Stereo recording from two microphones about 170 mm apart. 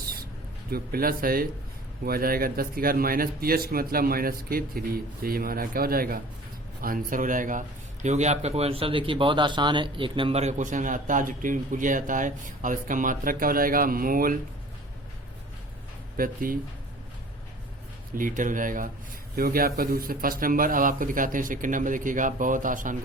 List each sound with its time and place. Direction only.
0.7 s speech: 60° right (ahead or behind)
16.1 s speech: 55° right (ahead or behind)
18.2 s speech: 50° right (ahead or behind)